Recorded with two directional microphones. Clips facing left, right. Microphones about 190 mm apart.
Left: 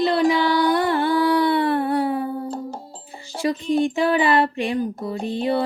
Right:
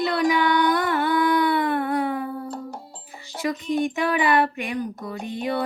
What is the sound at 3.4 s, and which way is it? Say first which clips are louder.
Speech: left 4 dB; 30° left (ahead or behind).